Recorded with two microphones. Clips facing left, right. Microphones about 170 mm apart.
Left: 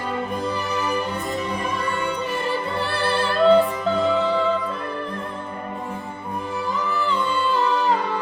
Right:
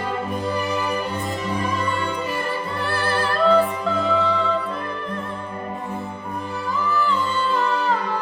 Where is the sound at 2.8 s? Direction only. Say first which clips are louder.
Right 2 dB; 30° left (ahead or behind).